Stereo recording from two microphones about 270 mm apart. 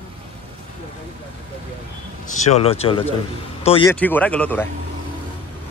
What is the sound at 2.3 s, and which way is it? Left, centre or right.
Speech, left.